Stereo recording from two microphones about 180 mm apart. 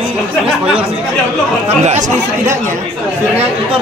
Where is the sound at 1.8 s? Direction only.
40° right (ahead or behind).